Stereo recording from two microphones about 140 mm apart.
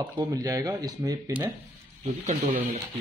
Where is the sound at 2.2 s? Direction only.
50° right (ahead or behind).